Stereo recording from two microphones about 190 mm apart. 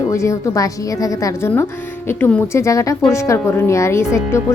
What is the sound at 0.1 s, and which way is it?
A woman's voice, 15° left (ahead or behind).